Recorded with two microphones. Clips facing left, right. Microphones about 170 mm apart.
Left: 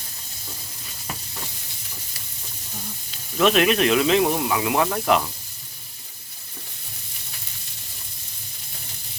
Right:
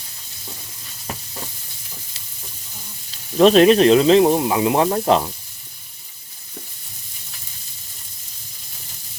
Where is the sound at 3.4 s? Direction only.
35° right (ahead or behind).